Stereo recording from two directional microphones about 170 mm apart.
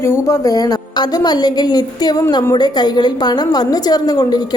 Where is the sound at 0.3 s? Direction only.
20° left (ahead or behind).